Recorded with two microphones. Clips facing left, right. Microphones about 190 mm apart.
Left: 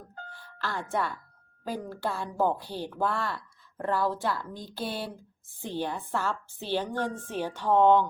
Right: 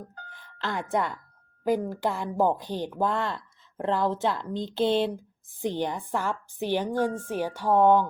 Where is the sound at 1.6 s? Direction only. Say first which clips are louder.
Right 7 dB; 15° right (ahead or behind).